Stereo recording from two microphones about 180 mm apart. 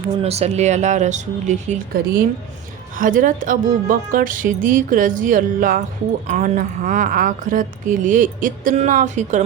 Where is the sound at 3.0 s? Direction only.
50° right (ahead or behind).